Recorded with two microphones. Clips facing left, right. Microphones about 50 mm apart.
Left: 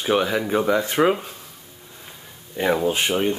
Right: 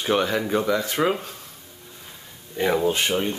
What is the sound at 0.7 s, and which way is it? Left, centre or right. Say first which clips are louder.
Speech: left 6 dB; left.